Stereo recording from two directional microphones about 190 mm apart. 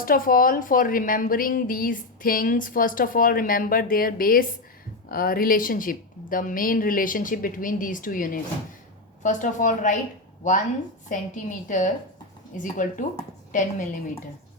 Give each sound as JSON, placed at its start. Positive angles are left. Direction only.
{"t": 0.0, "sound": "a woman's voice", "side_deg": 50}
{"t": 11.1, "sound": "a woman's voice", "side_deg": 40}